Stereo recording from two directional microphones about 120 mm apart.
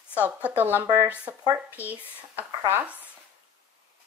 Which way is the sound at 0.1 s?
15° right (ahead or behind).